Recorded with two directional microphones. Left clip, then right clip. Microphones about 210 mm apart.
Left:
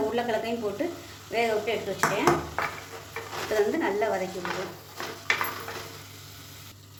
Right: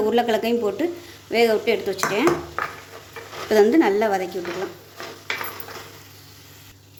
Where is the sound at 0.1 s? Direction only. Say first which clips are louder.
Right 8 dB; 50° right (ahead or behind).